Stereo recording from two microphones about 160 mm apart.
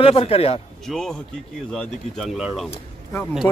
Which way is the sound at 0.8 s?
Centre (ahead or behind).